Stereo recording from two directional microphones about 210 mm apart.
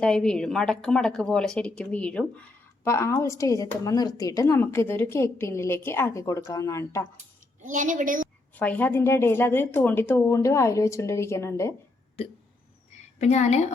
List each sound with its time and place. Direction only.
0.0 s a woman's voice: 5° left (ahead or behind)
7.6 s a woman's voice: 35° right (ahead or behind)
8.5 s a woman's voice: 5° left (ahead or behind)
13.1 s a woman's voice: 35° left (ahead or behind)